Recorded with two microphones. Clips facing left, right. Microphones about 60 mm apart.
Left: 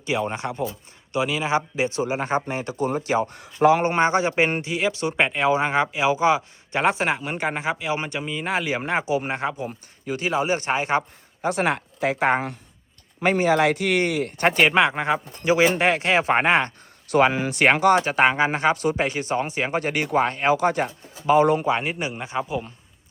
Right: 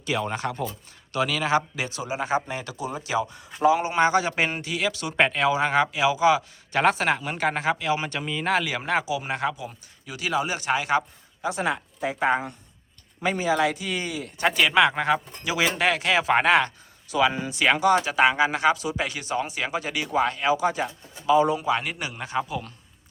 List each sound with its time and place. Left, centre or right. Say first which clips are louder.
0.0 s speech: left 2 dB; left
3.2 s speech: left 3 dB; left
3.9 s speech: left 1 dB; left
5.1 s speech: right 1 dB; centre
6.7 s speech: even; centre
8.6 s speech: left 1 dB; left
9.6 s speech: left 6 dB; left
11.4 s speech: left 4 dB; left
14.7 s speech: even; left
17.3 s speech: left 5 dB; left
17.7 s speech: left 2 dB; left
21.6 s speech: left 2 dB; left